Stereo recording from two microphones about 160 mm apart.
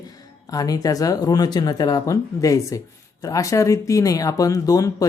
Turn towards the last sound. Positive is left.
turn(degrees=20)  # may be behind; listen again after turning